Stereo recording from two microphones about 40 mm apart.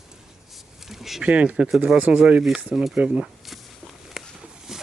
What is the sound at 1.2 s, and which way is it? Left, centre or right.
Speech, right.